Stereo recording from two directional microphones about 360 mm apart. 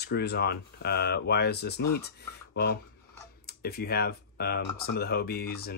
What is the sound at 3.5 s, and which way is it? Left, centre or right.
Speech, left.